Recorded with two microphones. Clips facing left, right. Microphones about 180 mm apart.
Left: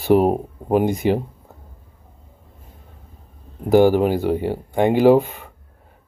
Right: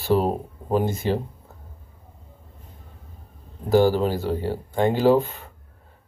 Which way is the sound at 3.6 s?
15° left (ahead or behind).